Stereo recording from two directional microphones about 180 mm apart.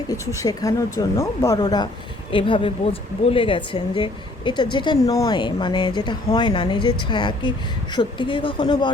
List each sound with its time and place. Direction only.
0.1 s speech: 20° left (ahead or behind)